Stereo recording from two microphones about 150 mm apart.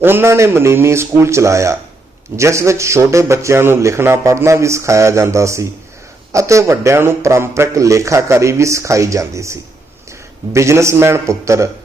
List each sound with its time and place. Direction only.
0.0 s a man's voice: 15° right (ahead or behind)